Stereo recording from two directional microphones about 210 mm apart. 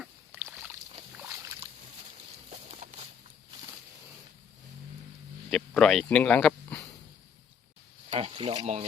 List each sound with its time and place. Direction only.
0.3 s boat: 5° right (ahead or behind)
2.5 s a sound: 30° right (ahead or behind)
5.5 s speech: 5° left (ahead or behind)
8.1 s speech: 25° right (ahead or behind)